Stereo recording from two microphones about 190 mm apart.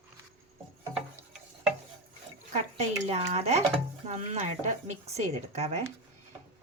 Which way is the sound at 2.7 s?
35° right (ahead or behind).